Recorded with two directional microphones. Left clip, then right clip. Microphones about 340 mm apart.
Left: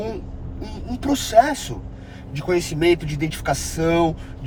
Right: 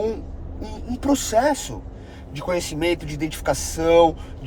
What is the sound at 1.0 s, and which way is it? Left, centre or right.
Speech, centre.